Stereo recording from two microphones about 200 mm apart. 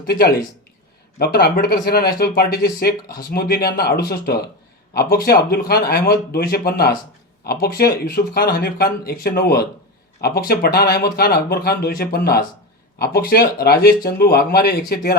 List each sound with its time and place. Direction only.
0.0 s speech: 50° left (ahead or behind)